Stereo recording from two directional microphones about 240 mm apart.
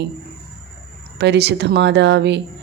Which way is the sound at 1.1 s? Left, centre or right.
Right.